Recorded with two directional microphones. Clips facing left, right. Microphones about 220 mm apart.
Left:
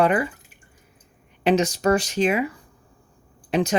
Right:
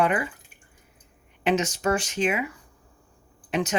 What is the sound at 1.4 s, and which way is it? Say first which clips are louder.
Speech: left 4 dB; 35° left (ahead or behind).